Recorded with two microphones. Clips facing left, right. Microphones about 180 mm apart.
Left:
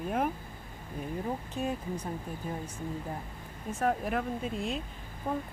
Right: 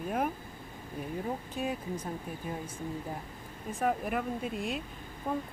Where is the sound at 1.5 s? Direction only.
5° right (ahead or behind).